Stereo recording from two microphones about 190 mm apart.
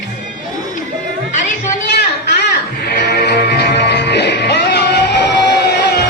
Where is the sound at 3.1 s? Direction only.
60° left (ahead or behind).